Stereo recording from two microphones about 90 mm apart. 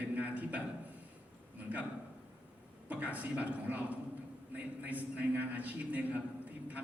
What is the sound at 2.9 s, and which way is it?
A man's voice, 15° right (ahead or behind).